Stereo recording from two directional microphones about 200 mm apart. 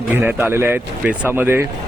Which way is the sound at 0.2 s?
10° right (ahead or behind).